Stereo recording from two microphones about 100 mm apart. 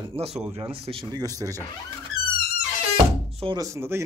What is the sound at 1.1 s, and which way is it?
Speech, 40° right (ahead or behind).